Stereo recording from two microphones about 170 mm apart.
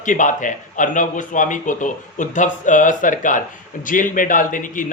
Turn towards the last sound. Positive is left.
turn(degrees=50)  # may be behind; listen again after turning